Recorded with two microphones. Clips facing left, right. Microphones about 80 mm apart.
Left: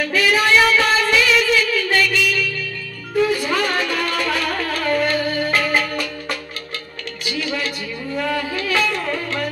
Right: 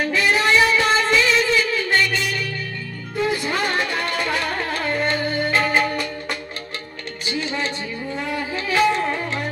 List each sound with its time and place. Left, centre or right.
0.0 s music: right
7.2 s music: right